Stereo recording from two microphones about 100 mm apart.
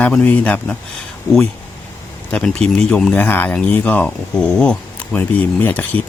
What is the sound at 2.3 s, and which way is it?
Speech, 10° left (ahead or behind).